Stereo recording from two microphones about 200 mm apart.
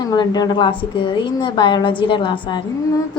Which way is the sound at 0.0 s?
20° left (ahead or behind).